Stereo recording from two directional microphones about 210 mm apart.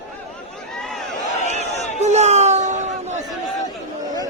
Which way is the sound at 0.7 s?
5° left (ahead or behind).